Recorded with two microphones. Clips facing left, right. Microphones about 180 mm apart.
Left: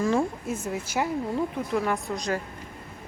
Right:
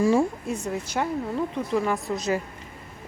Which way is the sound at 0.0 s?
10° right (ahead or behind).